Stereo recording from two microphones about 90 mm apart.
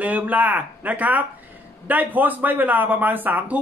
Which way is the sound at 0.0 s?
15° right (ahead or behind).